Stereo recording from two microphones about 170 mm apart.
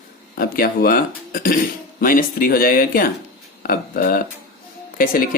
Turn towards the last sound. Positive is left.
turn(degrees=55)  # may be behind; listen again after turning